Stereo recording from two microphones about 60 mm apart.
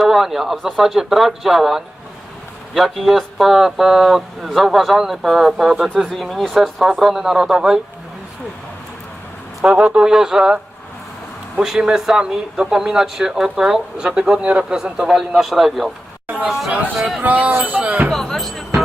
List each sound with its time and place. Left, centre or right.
0.0 s speech: centre
9.7 s speech: centre
16.2 s a sound: right
16.5 s speech: centre
17.2 s speech: right
18.1 s speech: centre